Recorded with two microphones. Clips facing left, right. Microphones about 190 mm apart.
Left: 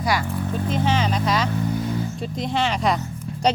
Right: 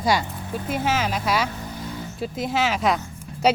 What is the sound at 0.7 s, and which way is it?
Speech, 5° right (ahead or behind).